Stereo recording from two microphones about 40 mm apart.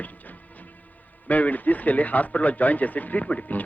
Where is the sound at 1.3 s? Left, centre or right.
Left.